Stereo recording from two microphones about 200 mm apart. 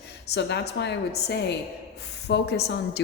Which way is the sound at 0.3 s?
55° left (ahead or behind).